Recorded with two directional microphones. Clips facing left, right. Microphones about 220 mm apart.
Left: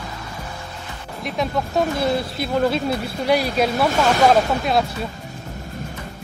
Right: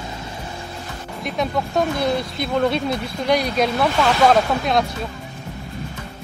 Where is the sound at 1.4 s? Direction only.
Centre (ahead or behind).